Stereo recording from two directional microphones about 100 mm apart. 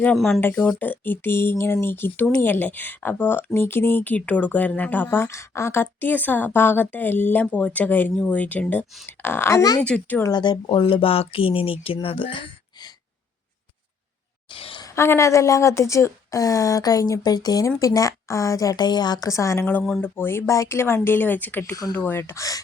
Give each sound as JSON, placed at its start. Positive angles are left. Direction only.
{"t": 0.3, "sound": "a woman's voice", "side_deg": 20}
{"t": 5.1, "sound": "a woman's voice", "side_deg": 25}
{"t": 9.8, "sound": "speech", "side_deg": 15}
{"t": 10.3, "sound": "speech", "side_deg": 50}
{"t": 12.0, "sound": "a sound", "side_deg": 60}
{"t": 14.5, "sound": "a sound", "side_deg": 60}
{"t": 14.8, "sound": "a woman's voice", "side_deg": 25}